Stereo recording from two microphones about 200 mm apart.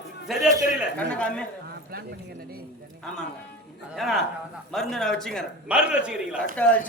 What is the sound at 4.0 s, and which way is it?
A man's voice, centre (ahead or behind).